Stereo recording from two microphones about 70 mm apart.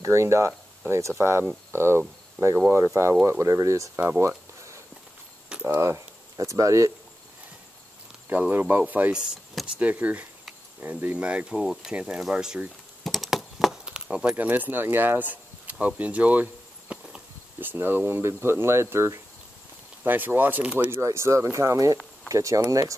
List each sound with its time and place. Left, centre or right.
0.0 s speech: right
5.8 s speech: right
8.3 s speech: right
11.5 s speech: centre
11.9 s speech: centre
13.0 s a sound: centre
13.8 s keys jangling: centre
14.3 s speech: right
16.9 s horse: centre
17.6 s speech: right
20.0 s speech: right
20.9 s speech: right